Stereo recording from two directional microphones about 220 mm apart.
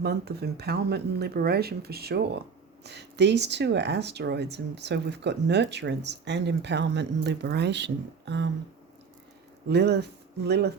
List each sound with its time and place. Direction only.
0.0 s speech: 45° right (ahead or behind)
9.6 s speech: 50° right (ahead or behind)